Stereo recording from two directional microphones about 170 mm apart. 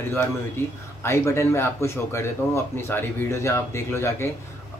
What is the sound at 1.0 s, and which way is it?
Speech, 15° left (ahead or behind).